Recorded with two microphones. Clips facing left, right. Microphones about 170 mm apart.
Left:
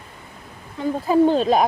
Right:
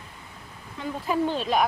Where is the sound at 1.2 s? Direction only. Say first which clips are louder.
Left 8 dB; 40° left (ahead or behind).